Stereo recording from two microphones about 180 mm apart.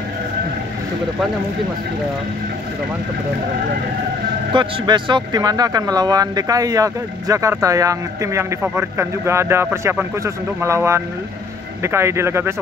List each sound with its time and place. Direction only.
4.6 s speech: 25° right (ahead or behind)